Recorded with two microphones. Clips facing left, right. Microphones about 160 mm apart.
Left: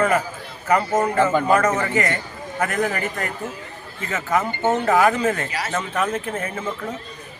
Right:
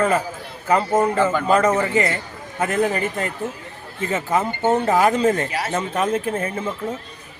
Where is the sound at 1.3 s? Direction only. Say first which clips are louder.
Left 1 dB; 20° left (ahead or behind).